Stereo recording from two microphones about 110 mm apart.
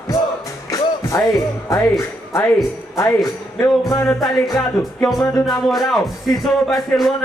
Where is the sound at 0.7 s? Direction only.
30° left (ahead or behind).